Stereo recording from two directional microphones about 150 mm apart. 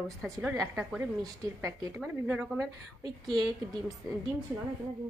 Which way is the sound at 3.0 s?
25° right (ahead or behind).